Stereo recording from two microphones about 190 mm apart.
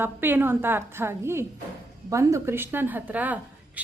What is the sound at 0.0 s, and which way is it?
A woman's voice, 10° right (ahead or behind).